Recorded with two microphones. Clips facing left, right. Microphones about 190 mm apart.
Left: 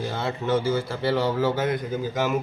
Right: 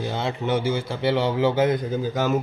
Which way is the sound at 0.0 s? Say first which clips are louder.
Right 1 dB; 20° right (ahead or behind).